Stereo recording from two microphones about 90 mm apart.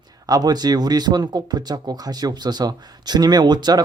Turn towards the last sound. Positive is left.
turn(degrees=-50)  # may be behind; listen again after turning